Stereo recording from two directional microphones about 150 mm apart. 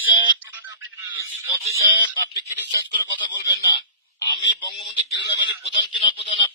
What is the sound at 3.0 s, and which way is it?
Speech, 30° left (ahead or behind).